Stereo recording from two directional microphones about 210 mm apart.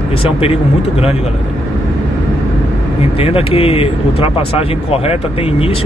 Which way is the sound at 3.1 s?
30° left (ahead or behind).